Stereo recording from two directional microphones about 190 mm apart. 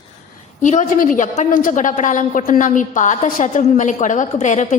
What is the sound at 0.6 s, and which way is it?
A woman's voice, 40° left (ahead or behind).